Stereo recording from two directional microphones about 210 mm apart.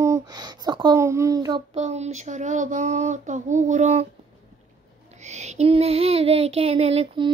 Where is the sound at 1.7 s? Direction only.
30° right (ahead or behind).